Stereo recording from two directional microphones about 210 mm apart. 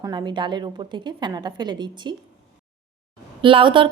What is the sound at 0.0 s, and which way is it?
A woman's voice, 20° right (ahead or behind).